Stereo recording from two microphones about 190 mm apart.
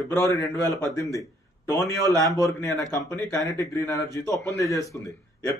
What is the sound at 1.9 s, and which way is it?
Speech, 15° left (ahead or behind).